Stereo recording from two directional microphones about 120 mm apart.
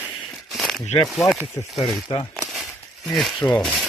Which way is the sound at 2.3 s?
Centre (ahead or behind).